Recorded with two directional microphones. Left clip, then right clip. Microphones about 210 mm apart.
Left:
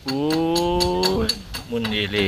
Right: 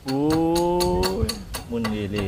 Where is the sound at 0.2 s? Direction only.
10° right (ahead or behind).